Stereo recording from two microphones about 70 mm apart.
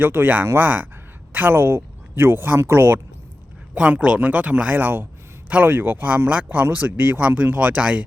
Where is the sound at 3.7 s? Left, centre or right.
Centre.